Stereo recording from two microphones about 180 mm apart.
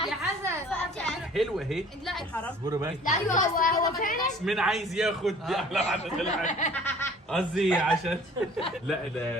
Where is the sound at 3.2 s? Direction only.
45° left (ahead or behind).